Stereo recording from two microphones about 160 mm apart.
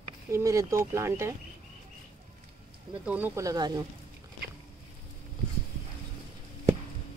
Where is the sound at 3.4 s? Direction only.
25° right (ahead or behind).